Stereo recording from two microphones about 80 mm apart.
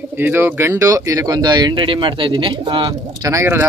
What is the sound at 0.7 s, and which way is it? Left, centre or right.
Speech, right.